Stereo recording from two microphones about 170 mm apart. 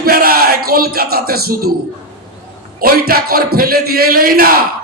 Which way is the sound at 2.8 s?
60° right (ahead or behind).